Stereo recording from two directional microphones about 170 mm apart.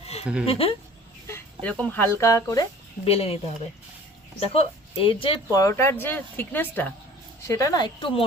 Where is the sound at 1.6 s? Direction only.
10° left (ahead or behind).